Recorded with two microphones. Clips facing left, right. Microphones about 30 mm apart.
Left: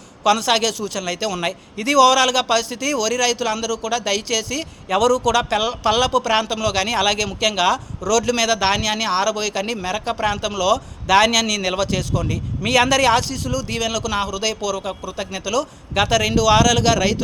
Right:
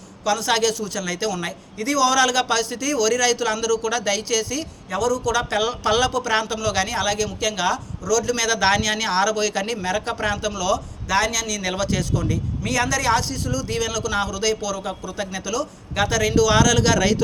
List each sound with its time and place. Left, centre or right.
0.4 s a man's voice: left
1.5 s speech: left
2.1 s a man's voice: left
4.9 s a man's voice: left
5.3 s a man's voice: left
6.1 s a man's voice: left
6.8 s speech: left
8.4 s speech: left
10.3 s a man's voice: left
11.1 s a man's voice: left
11.8 s a man's voice: left
12.8 s a man's voice: left
14.8 s speech: left
15.4 s a man's voice: left